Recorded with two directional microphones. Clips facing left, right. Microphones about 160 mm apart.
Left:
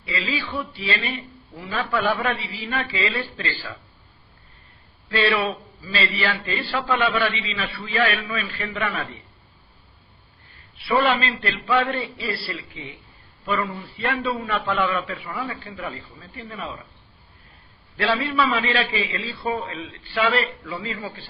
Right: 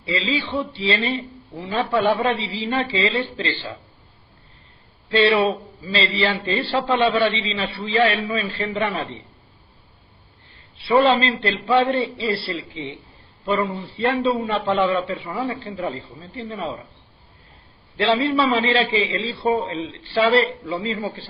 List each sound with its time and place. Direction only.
0.0 s a man's voice: 25° right (ahead or behind)
5.0 s a man's voice: 25° right (ahead or behind)
10.8 s a man's voice: 25° right (ahead or behind)
17.9 s a man's voice: 25° right (ahead or behind)